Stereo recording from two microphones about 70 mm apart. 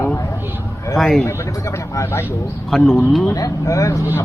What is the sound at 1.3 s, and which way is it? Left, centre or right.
Speech, left.